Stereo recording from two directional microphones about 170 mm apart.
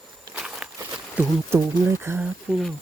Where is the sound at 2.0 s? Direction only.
15° right (ahead or behind).